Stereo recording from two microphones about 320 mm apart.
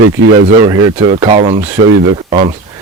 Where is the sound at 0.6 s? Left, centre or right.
Centre.